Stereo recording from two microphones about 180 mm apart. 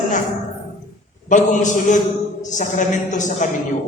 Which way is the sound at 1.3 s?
45° left (ahead or behind).